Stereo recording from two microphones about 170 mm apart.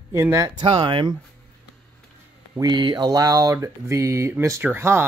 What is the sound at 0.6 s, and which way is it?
Speech, 30° right (ahead or behind).